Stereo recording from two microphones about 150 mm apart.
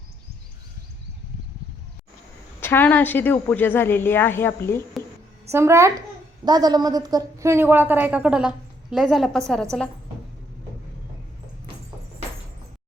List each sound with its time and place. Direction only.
2.6 s a woman's voice: 15° left (ahead or behind)
5.5 s a woman's voice: 20° right (ahead or behind); by 9.4 s centre (ahead or behind)